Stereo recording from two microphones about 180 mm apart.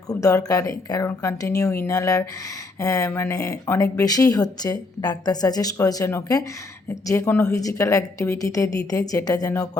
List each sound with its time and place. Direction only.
0.1 s a woman's voice: 20° left (ahead or behind)